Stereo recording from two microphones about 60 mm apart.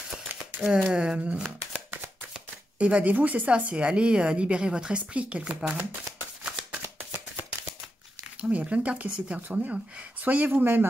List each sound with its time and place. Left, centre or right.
0.7 s speech: centre
8.4 s speech: right